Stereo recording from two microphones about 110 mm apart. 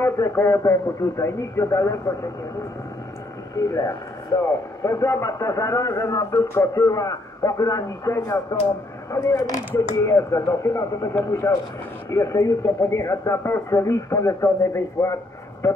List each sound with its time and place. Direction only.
0.0 s speech: 25° left (ahead or behind)
3.5 s speech: 30° left (ahead or behind)